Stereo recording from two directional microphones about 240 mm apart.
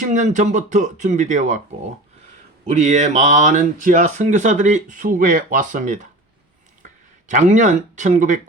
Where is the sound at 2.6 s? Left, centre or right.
Right.